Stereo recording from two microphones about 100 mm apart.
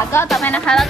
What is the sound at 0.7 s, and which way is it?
Speech, 10° left (ahead or behind).